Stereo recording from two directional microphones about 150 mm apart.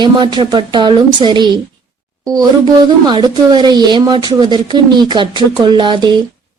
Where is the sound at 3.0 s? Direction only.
30° right (ahead or behind).